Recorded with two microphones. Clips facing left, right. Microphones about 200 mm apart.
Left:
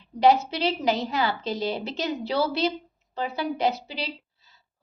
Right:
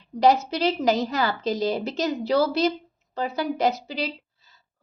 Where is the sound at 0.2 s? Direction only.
40° right (ahead or behind).